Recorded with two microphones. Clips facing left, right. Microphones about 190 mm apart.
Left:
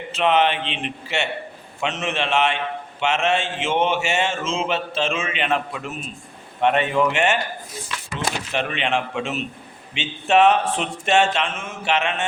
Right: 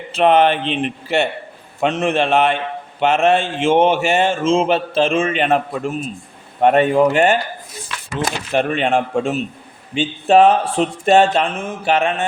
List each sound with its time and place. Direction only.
0.2 s a man's voice: 45° right (ahead or behind)
9.9 s speech: 35° right (ahead or behind)